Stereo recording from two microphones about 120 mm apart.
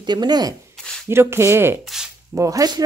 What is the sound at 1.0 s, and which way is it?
Speech, 20° right (ahead or behind).